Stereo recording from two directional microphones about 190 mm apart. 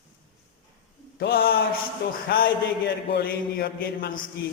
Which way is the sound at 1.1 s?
55° left (ahead or behind).